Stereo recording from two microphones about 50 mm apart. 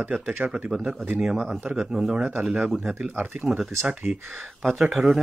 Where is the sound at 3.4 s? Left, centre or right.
Centre.